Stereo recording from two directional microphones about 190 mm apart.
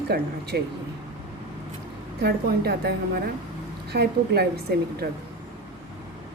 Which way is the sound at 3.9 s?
60° right (ahead or behind).